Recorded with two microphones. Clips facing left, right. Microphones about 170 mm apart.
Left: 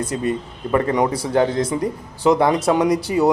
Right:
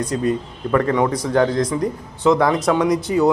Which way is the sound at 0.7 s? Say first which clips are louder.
Right 1 dB; 15° left (ahead or behind).